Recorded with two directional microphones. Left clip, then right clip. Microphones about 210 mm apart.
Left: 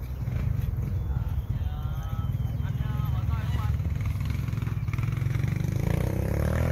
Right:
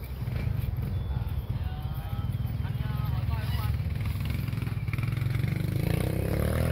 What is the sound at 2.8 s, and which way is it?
Vehicle, 45° right (ahead or behind).